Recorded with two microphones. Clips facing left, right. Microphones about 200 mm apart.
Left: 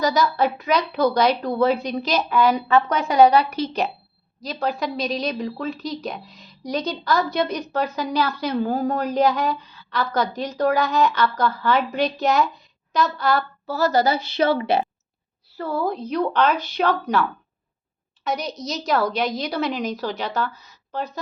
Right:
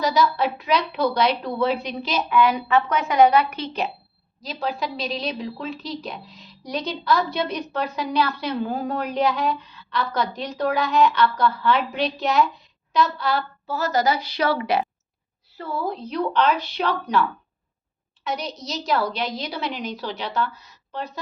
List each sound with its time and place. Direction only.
0.0 s a woman's voice: 45° left (ahead or behind); by 14.8 s 25° left (ahead or behind)
15.5 s a woman's voice: 40° left (ahead or behind)
18.2 s a sound: 45° left (ahead or behind)
18.6 s a woman's voice: 45° left (ahead or behind)